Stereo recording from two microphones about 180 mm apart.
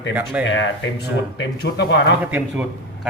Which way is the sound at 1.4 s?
70° left (ahead or behind).